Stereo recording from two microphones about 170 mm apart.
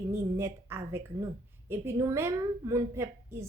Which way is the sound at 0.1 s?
15° right (ahead or behind).